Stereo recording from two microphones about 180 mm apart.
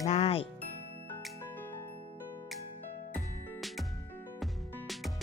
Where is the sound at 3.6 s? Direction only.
Centre (ahead or behind).